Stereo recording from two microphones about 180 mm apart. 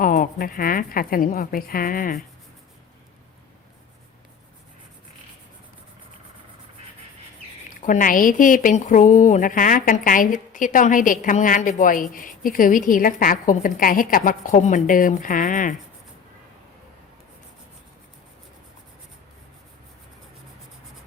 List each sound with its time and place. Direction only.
0.0 s a woman's voice: 50° left (ahead or behind)
7.7 s a woman's voice: 45° left (ahead or behind)